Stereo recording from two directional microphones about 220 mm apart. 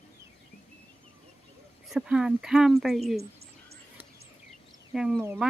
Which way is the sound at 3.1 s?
45° right (ahead or behind).